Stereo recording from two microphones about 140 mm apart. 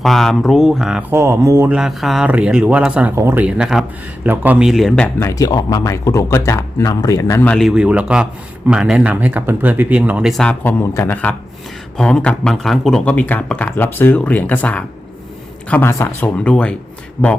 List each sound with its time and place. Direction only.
0.0 s speech: centre (ahead or behind)
1.1 s speech: 20° right (ahead or behind)
1.7 s a man's voice: centre (ahead or behind)
5.2 s speech: 25° left (ahead or behind)
7.4 s speech: 5° left (ahead or behind)
7.7 s a man's voice: 5° right (ahead or behind)
10.4 s speech: 10° left (ahead or behind)